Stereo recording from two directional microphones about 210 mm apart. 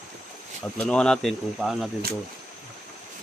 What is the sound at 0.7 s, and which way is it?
Speech, 5° left (ahead or behind).